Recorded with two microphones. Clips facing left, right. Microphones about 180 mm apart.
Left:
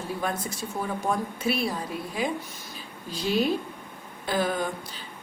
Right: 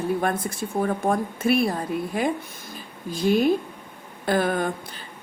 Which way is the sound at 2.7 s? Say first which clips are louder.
Right 6 dB; 50° right (ahead or behind).